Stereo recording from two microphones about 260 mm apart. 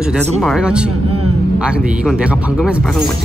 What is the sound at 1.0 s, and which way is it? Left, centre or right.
Speech, right.